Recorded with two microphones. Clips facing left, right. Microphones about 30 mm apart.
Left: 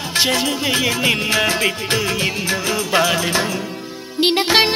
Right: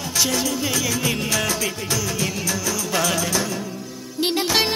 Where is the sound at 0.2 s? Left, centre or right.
Left.